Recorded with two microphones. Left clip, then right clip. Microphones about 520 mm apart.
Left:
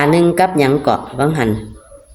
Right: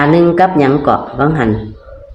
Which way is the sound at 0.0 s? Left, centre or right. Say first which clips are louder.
Right 3 dB; left.